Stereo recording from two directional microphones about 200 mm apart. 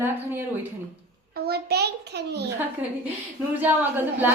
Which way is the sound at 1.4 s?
55° right (ahead or behind).